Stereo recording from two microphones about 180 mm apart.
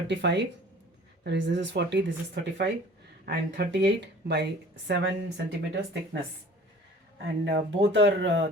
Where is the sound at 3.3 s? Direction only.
65° right (ahead or behind).